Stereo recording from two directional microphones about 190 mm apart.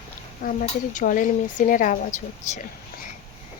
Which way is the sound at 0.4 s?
45° left (ahead or behind).